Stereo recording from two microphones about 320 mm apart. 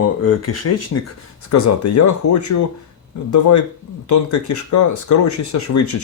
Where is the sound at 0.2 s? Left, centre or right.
Left.